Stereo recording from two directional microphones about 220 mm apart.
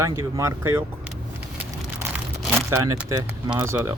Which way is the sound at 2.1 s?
10° right (ahead or behind).